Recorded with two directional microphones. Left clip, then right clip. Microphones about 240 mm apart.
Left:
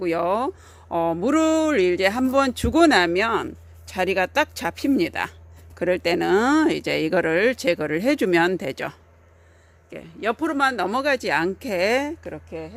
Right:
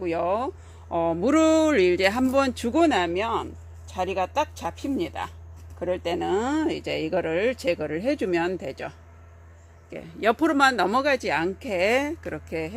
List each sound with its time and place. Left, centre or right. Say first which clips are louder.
0.0 s speech: left 3 dB; left
9.9 s speech: right 2 dB; centre
12.5 s speech: right 6 dB; centre